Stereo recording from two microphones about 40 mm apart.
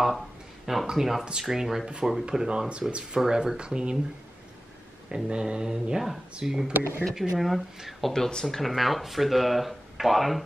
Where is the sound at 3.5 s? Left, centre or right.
Right.